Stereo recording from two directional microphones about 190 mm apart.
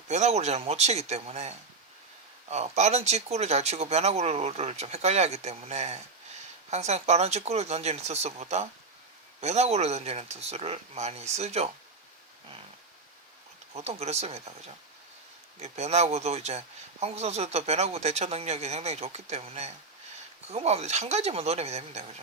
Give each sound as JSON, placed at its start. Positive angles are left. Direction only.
{"t": 0.1, "sound": "speech", "side_deg": -35}
{"t": 13.7, "sound": "speech", "side_deg": -35}
{"t": 15.6, "sound": "speech", "side_deg": -35}